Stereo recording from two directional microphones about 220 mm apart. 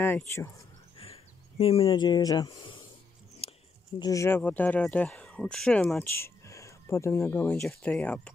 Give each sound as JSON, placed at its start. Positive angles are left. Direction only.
{"t": 0.0, "sound": "speech", "side_deg": 10}
{"t": 0.9, "sound": "a sound", "side_deg": 25}
{"t": 4.0, "sound": "speech", "side_deg": 15}